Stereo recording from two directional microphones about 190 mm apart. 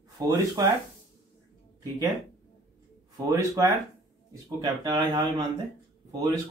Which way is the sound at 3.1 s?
20° right (ahead or behind).